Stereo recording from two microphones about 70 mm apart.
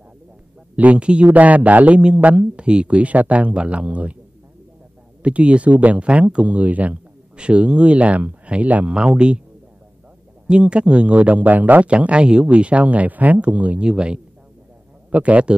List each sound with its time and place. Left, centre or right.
0.7 s speech: centre
5.2 s speech: centre
10.5 s a man's voice: centre